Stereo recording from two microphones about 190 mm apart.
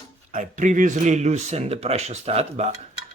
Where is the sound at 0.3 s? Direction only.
40° right (ahead or behind).